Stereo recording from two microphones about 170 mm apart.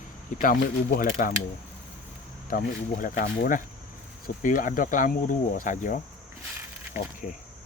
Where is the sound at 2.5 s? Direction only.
55° left (ahead or behind).